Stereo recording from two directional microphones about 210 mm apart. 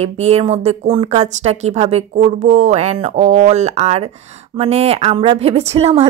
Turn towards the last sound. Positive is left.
turn(degrees=-30)  # may be behind; listen again after turning